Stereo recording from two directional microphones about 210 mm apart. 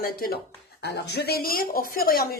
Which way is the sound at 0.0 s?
45° left (ahead or behind).